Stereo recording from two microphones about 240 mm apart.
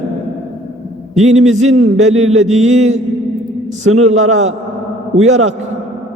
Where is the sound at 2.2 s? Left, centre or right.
Right.